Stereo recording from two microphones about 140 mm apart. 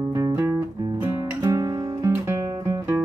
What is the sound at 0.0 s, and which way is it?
Music, 25° right (ahead or behind).